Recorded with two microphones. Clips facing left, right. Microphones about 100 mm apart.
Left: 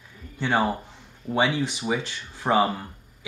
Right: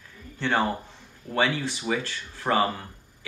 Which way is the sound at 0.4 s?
15° left (ahead or behind).